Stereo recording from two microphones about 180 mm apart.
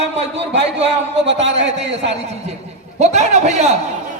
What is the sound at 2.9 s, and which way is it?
Speech, 40° right (ahead or behind).